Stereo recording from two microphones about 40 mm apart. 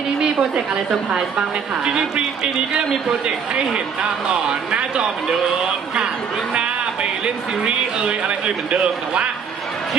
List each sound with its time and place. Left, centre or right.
0.7 s a woman's voice: right
7.6 s a woman's voice: right